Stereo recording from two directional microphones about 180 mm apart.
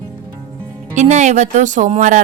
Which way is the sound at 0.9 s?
40° right (ahead or behind).